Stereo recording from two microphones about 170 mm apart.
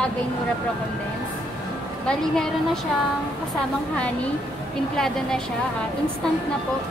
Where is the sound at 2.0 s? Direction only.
5° left (ahead or behind).